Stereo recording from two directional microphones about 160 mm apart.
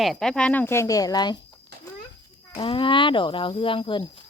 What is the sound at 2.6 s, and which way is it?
Speech, 30° left (ahead or behind).